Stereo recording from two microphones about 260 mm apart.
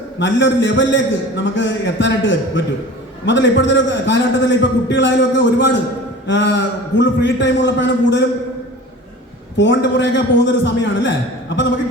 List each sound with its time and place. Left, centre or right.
0.2 s a man's voice: left
9.6 s a man's voice: left